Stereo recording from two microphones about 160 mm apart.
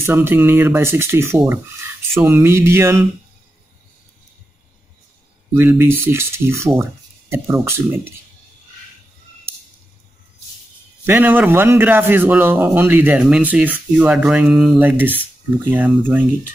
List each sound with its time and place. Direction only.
0.0 s a man's voice: 15° right (ahead or behind)
5.5 s a man's voice: 15° right (ahead or behind)
11.1 s a man's voice: 10° right (ahead or behind)